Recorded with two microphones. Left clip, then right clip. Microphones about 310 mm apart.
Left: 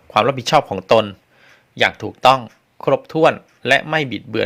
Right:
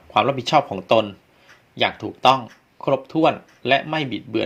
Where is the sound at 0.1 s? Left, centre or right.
Left.